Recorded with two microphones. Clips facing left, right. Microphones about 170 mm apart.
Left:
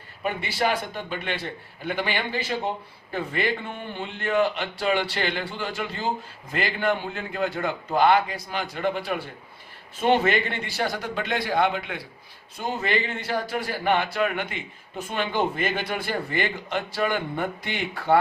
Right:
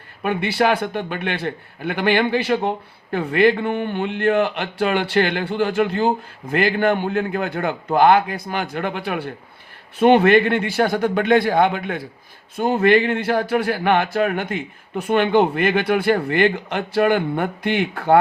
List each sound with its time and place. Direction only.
0.2 s speech: 60° right (ahead or behind)
14.1 s speech: 45° right (ahead or behind)